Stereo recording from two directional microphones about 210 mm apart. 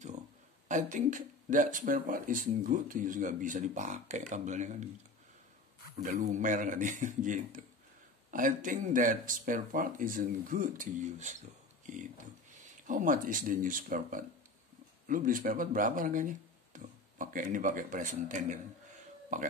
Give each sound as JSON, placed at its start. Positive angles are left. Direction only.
{"t": 0.7, "sound": "speech", "side_deg": -35}
{"t": 6.0, "sound": "speech", "side_deg": -35}
{"t": 12.8, "sound": "speech", "side_deg": -40}